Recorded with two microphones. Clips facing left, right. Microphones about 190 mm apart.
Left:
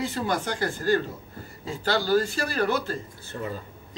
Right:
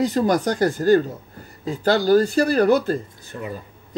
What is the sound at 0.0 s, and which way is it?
Speech, 40° right (ahead or behind).